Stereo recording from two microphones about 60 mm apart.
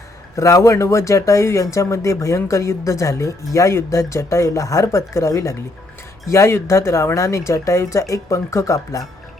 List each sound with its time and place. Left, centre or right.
0.3 s speech: left